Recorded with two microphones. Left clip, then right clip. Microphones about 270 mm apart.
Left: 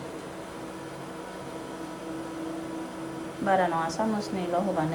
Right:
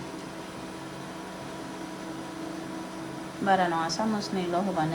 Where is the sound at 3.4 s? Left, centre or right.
Centre.